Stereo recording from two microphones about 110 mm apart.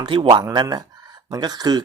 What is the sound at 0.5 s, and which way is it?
A man's voice, 40° right (ahead or behind).